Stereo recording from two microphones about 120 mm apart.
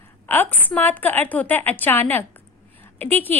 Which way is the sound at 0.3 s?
15° left (ahead or behind).